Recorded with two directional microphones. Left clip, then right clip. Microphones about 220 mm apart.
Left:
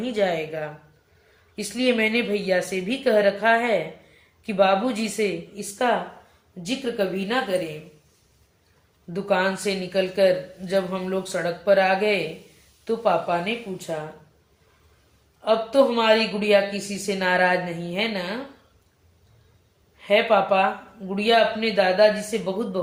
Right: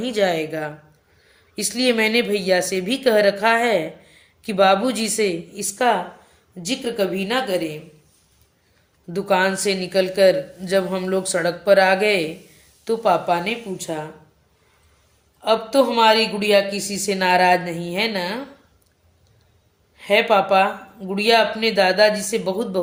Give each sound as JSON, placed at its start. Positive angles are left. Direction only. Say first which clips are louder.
{"t": 0.0, "sound": "a woman's voice", "louder": "right 3 dB", "side_deg": -50}
{"t": 9.1, "sound": "speech", "louder": "right 4 dB", "side_deg": -50}
{"t": 15.4, "sound": "speech", "louder": "right 2 dB", "side_deg": -55}
{"t": 20.0, "sound": "speech", "louder": "right 2 dB", "side_deg": -55}